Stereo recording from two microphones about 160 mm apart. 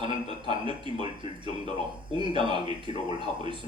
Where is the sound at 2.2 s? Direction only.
30° right (ahead or behind).